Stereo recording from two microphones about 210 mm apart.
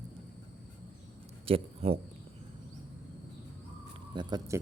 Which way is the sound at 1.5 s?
25° right (ahead or behind).